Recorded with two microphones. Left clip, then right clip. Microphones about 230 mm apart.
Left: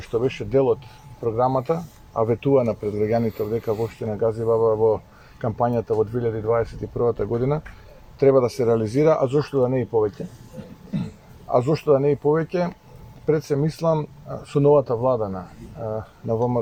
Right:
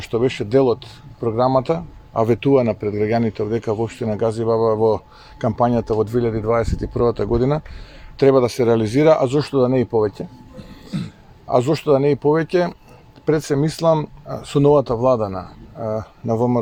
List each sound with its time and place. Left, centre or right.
0.0 s speech: right
11.4 s speech: right